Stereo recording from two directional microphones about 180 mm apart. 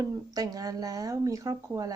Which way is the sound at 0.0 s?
20° right (ahead or behind).